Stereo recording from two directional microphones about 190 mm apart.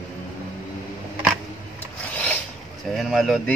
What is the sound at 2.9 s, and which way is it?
Speech, centre (ahead or behind).